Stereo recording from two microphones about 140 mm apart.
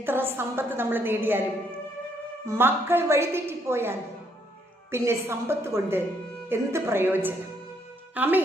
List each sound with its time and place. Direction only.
0.0 s a woman's voice: 15° right (ahead or behind)
2.5 s a woman's voice: 15° right (ahead or behind)